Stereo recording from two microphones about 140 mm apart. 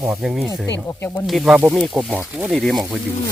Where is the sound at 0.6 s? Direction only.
15° left (ahead or behind).